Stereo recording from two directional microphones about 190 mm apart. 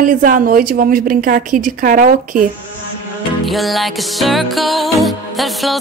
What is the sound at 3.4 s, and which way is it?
Music, centre (ahead or behind).